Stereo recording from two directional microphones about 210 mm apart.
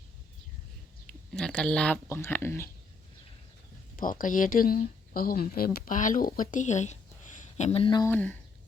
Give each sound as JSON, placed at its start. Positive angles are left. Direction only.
{"t": 1.3, "sound": "speech", "side_deg": 5}
{"t": 3.9, "sound": "speech", "side_deg": 40}
{"t": 8.1, "sound": "speech", "side_deg": 10}